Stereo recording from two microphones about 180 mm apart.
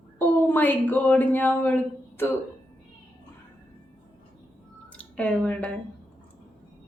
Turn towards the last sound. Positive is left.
turn(degrees=5)  # may be behind; listen again after turning